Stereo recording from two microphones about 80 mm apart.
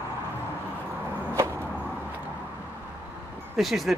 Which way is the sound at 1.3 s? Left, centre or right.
Right.